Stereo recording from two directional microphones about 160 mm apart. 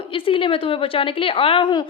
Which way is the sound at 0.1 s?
35° left (ahead or behind).